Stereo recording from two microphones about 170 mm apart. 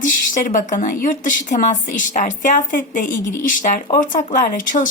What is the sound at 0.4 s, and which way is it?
A woman's voice, 50° left (ahead or behind).